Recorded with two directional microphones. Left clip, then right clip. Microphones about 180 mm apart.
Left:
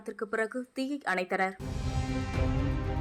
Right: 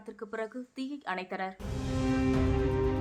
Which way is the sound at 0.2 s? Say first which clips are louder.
Left 6 dB; 20° left (ahead or behind).